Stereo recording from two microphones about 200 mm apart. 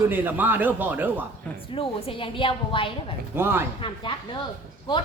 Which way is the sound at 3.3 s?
10° right (ahead or behind).